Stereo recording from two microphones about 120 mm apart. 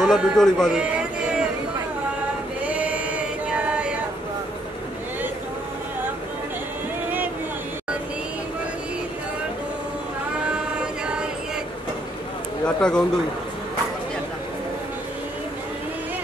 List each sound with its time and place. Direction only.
0.0 s a man's voice: 5° left (ahead or behind)
0.9 s a sound: 10° right (ahead or behind)
2.6 s choir: 10° right (ahead or behind)
12.6 s speech: 5° left (ahead or behind)